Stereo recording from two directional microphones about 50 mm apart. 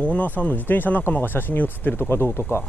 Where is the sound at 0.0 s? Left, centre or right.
Left.